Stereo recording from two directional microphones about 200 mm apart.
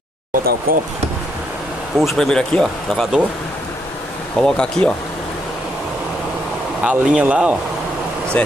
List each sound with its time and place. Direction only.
0.7 s speech: 45° right (ahead or behind)
2.0 s speech: centre (ahead or behind)
4.4 s speech: 5° left (ahead or behind)
6.8 s speech: 5° right (ahead or behind)